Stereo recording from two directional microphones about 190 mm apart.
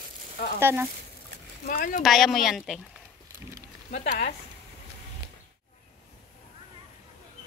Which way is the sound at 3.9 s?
40° left (ahead or behind).